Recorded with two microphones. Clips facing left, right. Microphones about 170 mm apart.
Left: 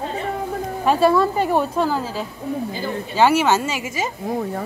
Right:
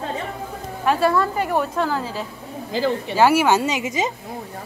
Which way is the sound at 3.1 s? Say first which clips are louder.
Even; 10° right (ahead or behind).